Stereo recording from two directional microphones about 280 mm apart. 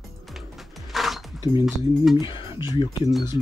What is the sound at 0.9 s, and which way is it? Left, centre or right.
Music, centre.